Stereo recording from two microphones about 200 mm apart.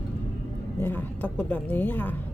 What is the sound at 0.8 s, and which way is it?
A woman's voice, 10° left (ahead or behind).